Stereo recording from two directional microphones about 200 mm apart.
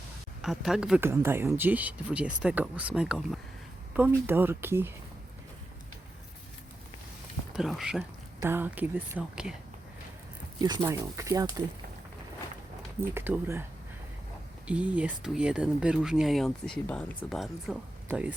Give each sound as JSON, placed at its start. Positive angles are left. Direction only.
{"t": 0.4, "sound": "speech", "side_deg": 0}
{"t": 7.5, "sound": "speech", "side_deg": 0}
{"t": 10.6, "sound": "speech", "side_deg": -20}
{"t": 13.0, "sound": "speech", "side_deg": -10}
{"t": 14.7, "sound": "speech", "side_deg": -5}